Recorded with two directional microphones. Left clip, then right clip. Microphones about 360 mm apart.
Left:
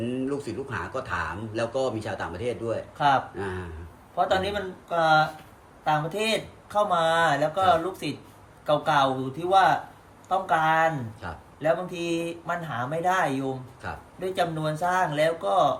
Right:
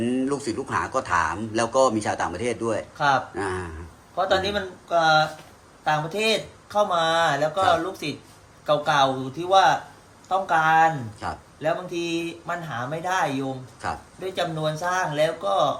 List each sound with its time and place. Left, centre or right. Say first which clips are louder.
0.0 s a man's voice: right 4 dB; centre
4.1 s speech: right 2 dB; centre
11.2 s a man's voice: right 10 dB; centre
11.6 s speech: even; centre